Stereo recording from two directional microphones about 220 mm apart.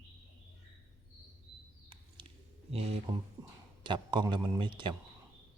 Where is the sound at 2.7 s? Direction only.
25° right (ahead or behind).